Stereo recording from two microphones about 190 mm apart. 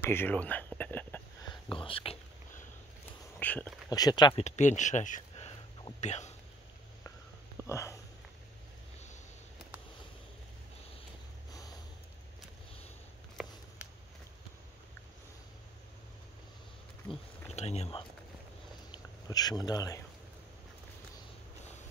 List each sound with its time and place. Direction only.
0.0 s a sound: 10° left (ahead or behind)
1.4 s whispering: 25° left (ahead or behind)
3.3 s speech: 10° left (ahead or behind)
3.9 s speech: 20° left (ahead or behind)
4.5 s speech: 40° left (ahead or behind)
7.6 s speech: 15° left (ahead or behind)
17.6 s a sound: 35° left (ahead or behind)
18.9 s speech: 20° left (ahead or behind)